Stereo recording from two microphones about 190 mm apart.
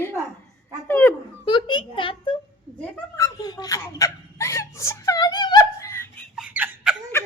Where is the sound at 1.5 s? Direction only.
25° left (ahead or behind).